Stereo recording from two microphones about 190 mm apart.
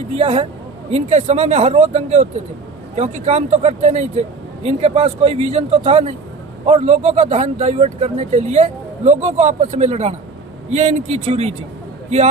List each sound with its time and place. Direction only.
0.1 s speech: 30° right (ahead or behind)